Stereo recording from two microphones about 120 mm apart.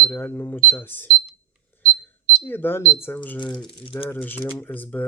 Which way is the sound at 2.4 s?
15° left (ahead or behind).